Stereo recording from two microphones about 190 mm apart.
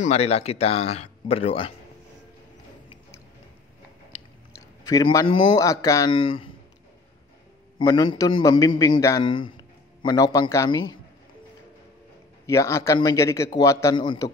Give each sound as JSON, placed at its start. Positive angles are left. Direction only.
{"t": 0.0, "sound": "speech", "side_deg": 35}
{"t": 4.6, "sound": "a man's voice", "side_deg": 20}
{"t": 7.8, "sound": "a man's voice", "side_deg": 25}
{"t": 12.4, "sound": "a man's voice", "side_deg": 15}